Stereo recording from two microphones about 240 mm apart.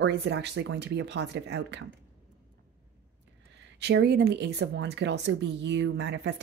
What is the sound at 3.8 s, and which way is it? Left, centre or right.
Speech, right.